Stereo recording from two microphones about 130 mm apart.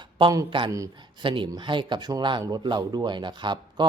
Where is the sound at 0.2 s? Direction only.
35° right (ahead or behind).